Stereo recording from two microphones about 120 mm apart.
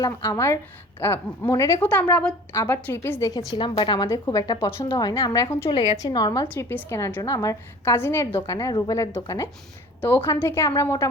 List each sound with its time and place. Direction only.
0.0 s a woman's voice: 30° left (ahead or behind)
1.8 s a woman's voice: 15° left (ahead or behind)
5.7 s a woman's voice: 45° left (ahead or behind)
6.0 s a woman's voice: 35° left (ahead or behind)
6.7 s a woman's voice: 20° left (ahead or behind)
10.0 s a woman's voice: 15° left (ahead or behind)